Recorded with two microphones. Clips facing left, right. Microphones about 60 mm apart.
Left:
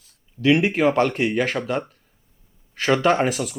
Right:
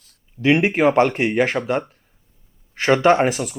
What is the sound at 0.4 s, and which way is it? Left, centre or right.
Speech, right.